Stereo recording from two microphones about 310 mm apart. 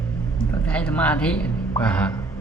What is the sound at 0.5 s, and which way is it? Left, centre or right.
A man's voice, centre.